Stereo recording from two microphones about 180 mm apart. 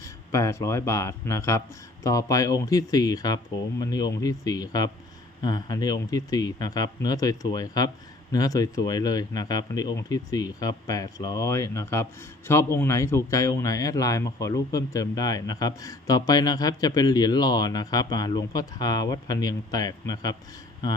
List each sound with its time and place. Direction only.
0.0 s speech: 15° left (ahead or behind)